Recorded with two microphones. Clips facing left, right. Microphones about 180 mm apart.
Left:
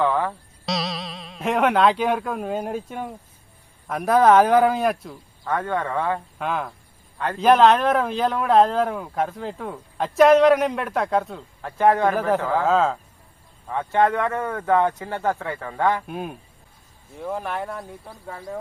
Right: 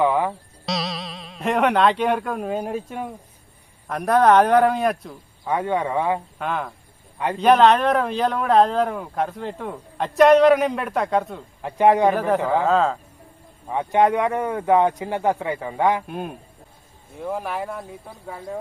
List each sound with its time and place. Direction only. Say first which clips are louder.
0.0 s a sound: right 2 dB; 15° right (ahead or behind)
0.6 s speech: even; centre (ahead or behind)
5.5 s a man's voice: right 2 dB; 15° right (ahead or behind)
6.4 s speech: even; centre (ahead or behind)
11.6 s a man's voice: right 2 dB; 15° right (ahead or behind)
12.1 s speech: right 1 dB; centre (ahead or behind)
13.7 s a man's voice: right 2 dB; 15° right (ahead or behind)
16.0 s speech: right 1 dB; centre (ahead or behind)